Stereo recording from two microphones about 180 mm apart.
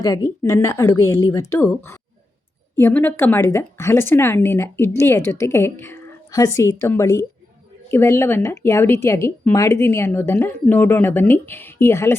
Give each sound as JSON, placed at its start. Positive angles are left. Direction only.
{"t": 0.0, "sound": "a woman's voice", "side_deg": 20}